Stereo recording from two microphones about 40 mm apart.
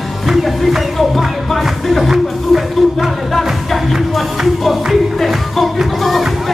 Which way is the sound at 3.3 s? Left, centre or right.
Centre.